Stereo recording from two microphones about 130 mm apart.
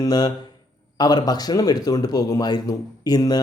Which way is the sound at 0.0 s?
30° left (ahead or behind).